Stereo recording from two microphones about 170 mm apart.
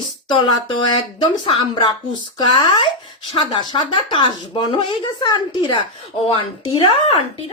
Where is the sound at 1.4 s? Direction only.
30° left (ahead or behind).